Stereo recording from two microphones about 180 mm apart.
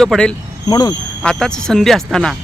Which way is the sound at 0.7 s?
20° left (ahead or behind).